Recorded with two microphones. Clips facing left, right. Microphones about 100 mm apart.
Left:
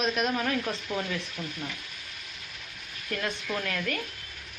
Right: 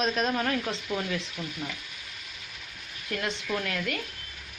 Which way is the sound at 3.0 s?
25° right (ahead or behind).